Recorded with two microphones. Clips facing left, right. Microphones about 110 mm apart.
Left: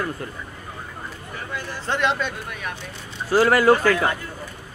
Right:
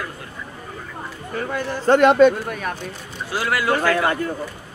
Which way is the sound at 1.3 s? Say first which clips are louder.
Right 8 dB; 55° right (ahead or behind).